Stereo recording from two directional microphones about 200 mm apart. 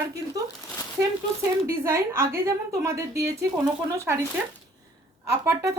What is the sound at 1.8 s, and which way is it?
Speech, 15° right (ahead or behind).